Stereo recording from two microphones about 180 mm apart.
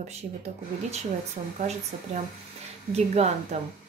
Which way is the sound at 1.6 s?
40° right (ahead or behind).